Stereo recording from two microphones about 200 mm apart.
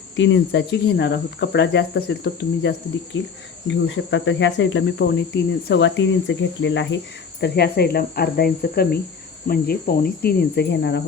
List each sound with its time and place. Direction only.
0.2 s cricket: 65° left (ahead or behind)
3.1 s speech: 70° left (ahead or behind)
3.7 s cricket: 65° left (ahead or behind)
7.4 s speech: 55° left (ahead or behind)